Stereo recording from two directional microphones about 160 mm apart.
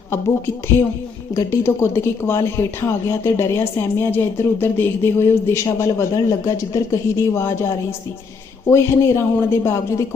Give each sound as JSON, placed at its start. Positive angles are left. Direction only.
{"t": 1.4, "sound": "speech", "side_deg": 15}